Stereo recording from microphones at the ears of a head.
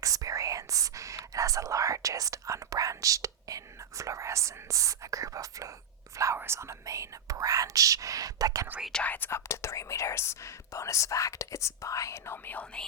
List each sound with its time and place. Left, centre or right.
0.0 s speech: right
9.1 s speech: left